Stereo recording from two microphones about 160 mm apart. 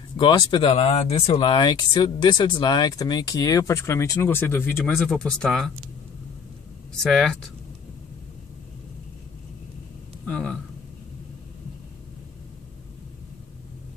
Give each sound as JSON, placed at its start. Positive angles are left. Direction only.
{"t": 0.2, "sound": "speech", "side_deg": 30}
{"t": 4.9, "sound": "speech", "side_deg": 5}
{"t": 7.0, "sound": "speech", "side_deg": 0}
{"t": 10.2, "sound": "a sound", "side_deg": 5}